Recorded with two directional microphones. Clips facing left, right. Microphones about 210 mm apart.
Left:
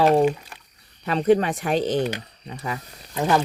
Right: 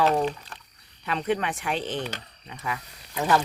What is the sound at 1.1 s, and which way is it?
Speech, 40° left (ahead or behind).